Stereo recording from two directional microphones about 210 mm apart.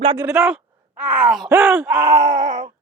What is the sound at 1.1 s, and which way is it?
Groan, 5° right (ahead or behind).